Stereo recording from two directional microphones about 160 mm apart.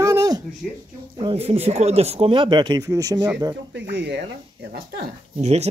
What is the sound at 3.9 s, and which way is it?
Speech, 90° right.